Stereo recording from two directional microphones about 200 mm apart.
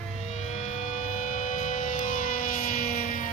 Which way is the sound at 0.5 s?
35° left (ahead or behind).